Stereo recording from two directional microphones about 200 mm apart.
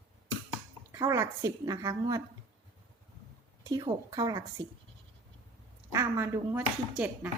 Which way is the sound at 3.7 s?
20° right (ahead or behind).